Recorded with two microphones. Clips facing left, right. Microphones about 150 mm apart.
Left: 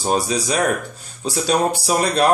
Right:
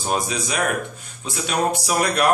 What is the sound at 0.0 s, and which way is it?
Speech, 35° left (ahead or behind).